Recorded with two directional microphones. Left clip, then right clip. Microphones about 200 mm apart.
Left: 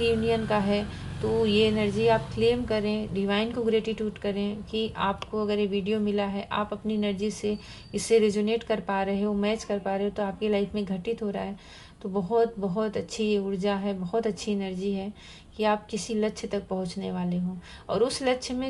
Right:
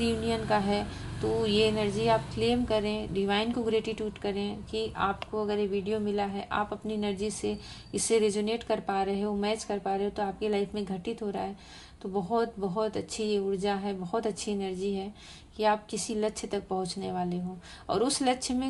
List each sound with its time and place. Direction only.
0.3 s a woman's voice: 30° right (ahead or behind)